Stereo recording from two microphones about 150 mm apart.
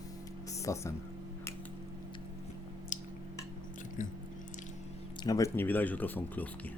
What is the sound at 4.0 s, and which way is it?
Speech, 55° left (ahead or behind).